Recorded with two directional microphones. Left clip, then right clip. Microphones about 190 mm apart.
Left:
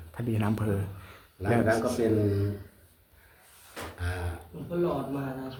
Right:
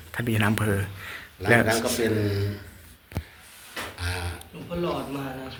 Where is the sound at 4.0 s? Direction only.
50° left (ahead or behind).